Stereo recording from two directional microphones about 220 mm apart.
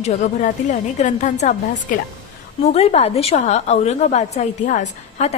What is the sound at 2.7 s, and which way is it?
A woman's voice, 30° left (ahead or behind).